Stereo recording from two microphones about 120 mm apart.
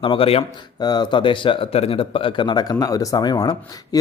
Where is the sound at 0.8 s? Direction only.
35° left (ahead or behind).